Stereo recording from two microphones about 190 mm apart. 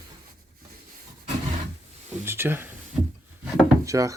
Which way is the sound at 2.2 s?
10° right (ahead or behind).